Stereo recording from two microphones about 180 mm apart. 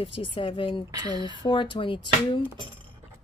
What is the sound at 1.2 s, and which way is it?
Speech, 25° left (ahead or behind).